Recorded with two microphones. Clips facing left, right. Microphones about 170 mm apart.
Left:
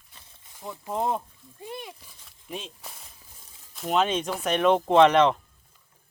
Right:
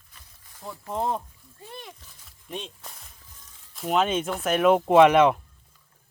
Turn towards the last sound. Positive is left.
turn(degrees=-10)  # may be behind; listen again after turning